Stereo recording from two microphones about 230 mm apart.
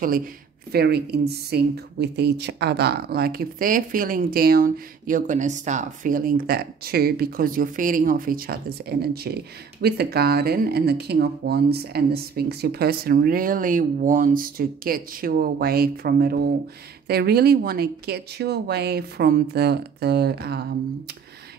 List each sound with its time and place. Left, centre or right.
0.0 s speech: right